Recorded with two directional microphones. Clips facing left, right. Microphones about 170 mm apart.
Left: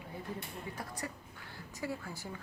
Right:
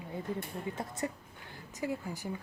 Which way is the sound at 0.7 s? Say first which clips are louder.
Right 6 dB; 20° right (ahead or behind).